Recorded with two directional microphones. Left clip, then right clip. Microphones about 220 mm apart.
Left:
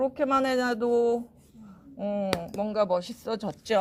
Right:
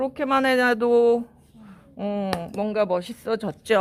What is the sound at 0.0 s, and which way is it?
Speech, 20° right (ahead or behind).